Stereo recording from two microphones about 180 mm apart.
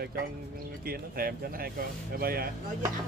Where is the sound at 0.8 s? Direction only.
55° right (ahead or behind).